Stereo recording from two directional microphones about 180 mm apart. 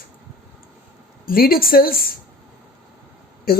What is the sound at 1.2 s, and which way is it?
Speech, 55° left (ahead or behind).